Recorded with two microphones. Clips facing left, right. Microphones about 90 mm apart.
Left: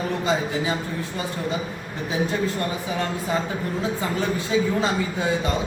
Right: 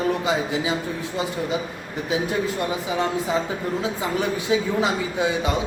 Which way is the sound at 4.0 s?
15° right (ahead or behind).